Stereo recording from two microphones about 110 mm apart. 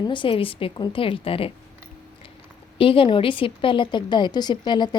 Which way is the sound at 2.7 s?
55° left (ahead or behind).